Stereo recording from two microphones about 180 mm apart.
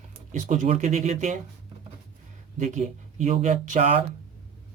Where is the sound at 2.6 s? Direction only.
40° right (ahead or behind).